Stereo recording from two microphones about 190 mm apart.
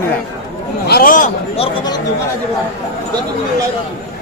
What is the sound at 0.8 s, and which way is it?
Speech, 50° left (ahead or behind).